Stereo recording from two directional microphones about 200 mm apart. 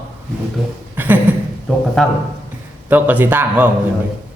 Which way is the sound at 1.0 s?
10° right (ahead or behind).